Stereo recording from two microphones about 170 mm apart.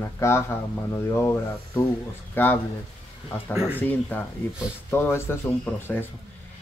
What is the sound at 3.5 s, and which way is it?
Speech, 5° right (ahead or behind).